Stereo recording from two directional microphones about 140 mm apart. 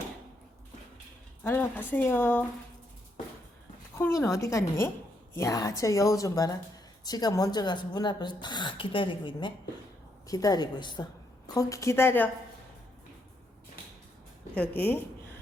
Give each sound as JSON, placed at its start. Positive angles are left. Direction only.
{"t": 1.5, "sound": "speech", "side_deg": 15}
{"t": 3.9, "sound": "a woman's voice", "side_deg": 15}
{"t": 10.2, "sound": "a woman's voice", "side_deg": 25}
{"t": 14.5, "sound": "speech", "side_deg": 10}